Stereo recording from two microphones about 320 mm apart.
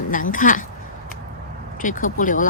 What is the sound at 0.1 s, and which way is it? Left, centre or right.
Speech, left.